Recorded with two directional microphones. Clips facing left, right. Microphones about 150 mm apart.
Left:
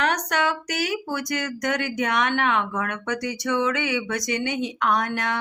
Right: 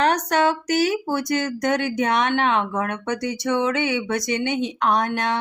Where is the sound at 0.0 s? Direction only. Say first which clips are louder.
Right 5 dB; 30° right (ahead or behind).